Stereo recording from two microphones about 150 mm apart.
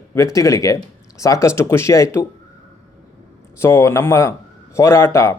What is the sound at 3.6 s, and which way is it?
A man's voice, 20° left (ahead or behind).